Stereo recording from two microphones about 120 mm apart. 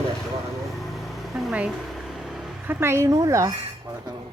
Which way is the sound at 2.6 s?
20° right (ahead or behind).